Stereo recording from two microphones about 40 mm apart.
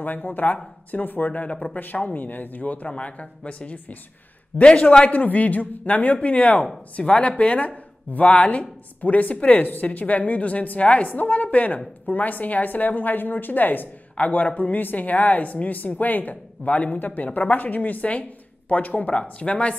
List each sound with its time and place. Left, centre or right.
0.0 s a woman's voice: left
1.5 s a woman's voice: left
2.1 s a woman's voice: left
2.6 s a woman's voice: left
5.0 s a woman's voice: left
17.0 s a woman's voice: left